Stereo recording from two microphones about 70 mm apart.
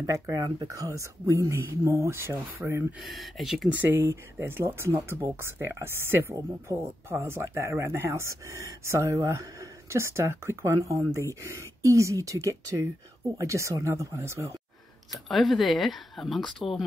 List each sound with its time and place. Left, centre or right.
0.0 s speech: right
2.6 s speech: centre
3.0 s speech: centre
3.7 s speech: right
6.3 s speech: right
7.1 s speech: right
15.2 s speech: centre